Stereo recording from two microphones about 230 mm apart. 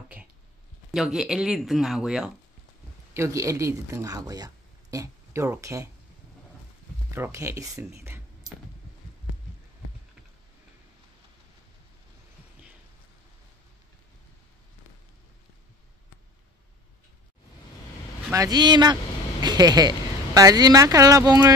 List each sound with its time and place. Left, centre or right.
0.9 s speech: centre
3.2 s speech: centre
7.2 s speech: centre
18.3 s speech: centre